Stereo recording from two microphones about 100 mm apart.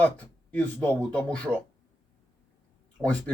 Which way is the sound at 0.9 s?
10° left (ahead or behind).